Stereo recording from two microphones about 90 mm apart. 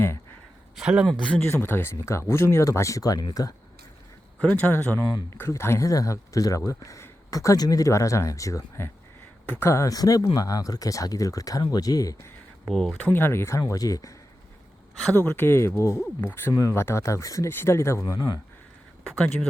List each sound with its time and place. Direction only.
0.8 s speech: 10° right (ahead or behind)
1.0 s speech: 5° left (ahead or behind)
1.5 s speech: 25° left (ahead or behind); by 3.5 s 45° left (ahead or behind)
4.4 s speech: 15° left (ahead or behind); by 12.3 s 40° left (ahead or behind)
12.6 s speech: centre (ahead or behind)
13.1 s speech: 25° left (ahead or behind)
15.1 s speech: 20° left (ahead or behind)
16.5 s speech: 40° left (ahead or behind)
16.7 s speech: 30° left (ahead or behind)